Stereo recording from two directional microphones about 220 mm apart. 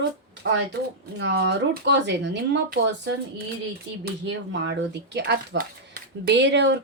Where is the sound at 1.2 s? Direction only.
50° right (ahead or behind).